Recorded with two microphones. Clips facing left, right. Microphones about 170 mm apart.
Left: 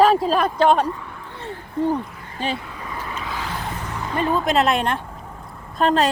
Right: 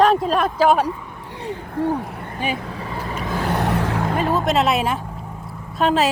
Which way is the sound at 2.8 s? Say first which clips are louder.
Right 3 dB; 35° right (ahead or behind).